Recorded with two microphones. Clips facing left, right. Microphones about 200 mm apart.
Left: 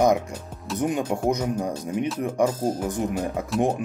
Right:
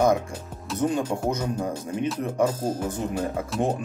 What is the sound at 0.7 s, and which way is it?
A man's voice, 15° left (ahead or behind).